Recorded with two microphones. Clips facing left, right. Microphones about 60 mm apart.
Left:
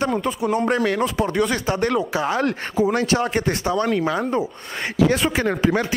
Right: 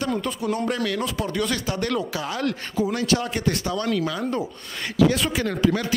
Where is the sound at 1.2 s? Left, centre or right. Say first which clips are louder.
Left 5 dB; left.